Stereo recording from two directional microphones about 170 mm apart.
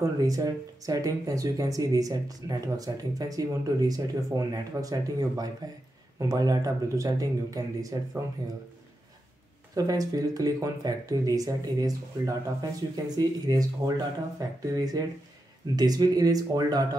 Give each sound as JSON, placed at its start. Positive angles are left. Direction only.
{"t": 0.0, "sound": "speech", "side_deg": -20}
{"t": 9.8, "sound": "speech", "side_deg": -20}